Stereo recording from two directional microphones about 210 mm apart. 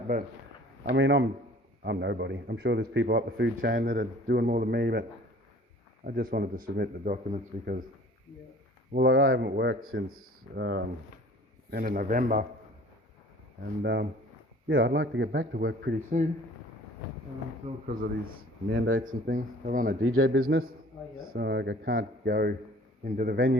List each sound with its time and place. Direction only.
0.1 s speech: 40° right (ahead or behind)
0.9 s a man's voice: 55° right (ahead or behind)
6.1 s a man's voice: 45° right (ahead or behind)
8.9 s a man's voice: 55° right (ahead or behind)
11.7 s speech: 40° right (ahead or behind)
13.8 s a man's voice: 55° right (ahead or behind)
17.6 s speech: 30° right (ahead or behind)
18.7 s a man's voice: 70° right (ahead or behind)
19.0 s speech: 40° right (ahead or behind)
20.0 s a man's voice: 75° right (ahead or behind); by 23.6 s 45° right (ahead or behind)